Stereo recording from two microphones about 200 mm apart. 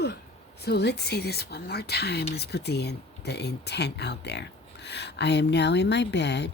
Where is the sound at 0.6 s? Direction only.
55° left (ahead or behind).